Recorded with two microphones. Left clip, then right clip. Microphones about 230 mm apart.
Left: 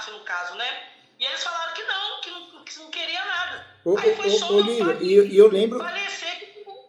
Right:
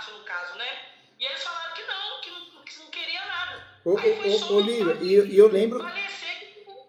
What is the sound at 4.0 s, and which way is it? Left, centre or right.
Speech, left.